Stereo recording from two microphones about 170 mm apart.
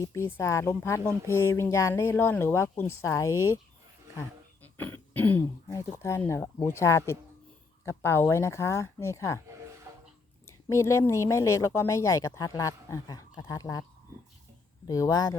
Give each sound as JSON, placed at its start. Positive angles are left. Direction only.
{"t": 0.0, "sound": "speech", "side_deg": 15}
{"t": 4.2, "sound": "throat clearing", "side_deg": 10}
{"t": 5.4, "sound": "speech", "side_deg": 20}
{"t": 9.9, "sound": "a sound", "side_deg": -15}
{"t": 10.7, "sound": "speech", "side_deg": 15}
{"t": 14.8, "sound": "speech", "side_deg": 20}